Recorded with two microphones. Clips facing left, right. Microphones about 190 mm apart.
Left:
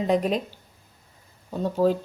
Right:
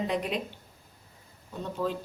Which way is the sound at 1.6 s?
40° left (ahead or behind).